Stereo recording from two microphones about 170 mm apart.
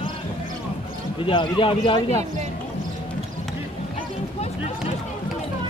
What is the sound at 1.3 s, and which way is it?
Speech, 30° left (ahead or behind).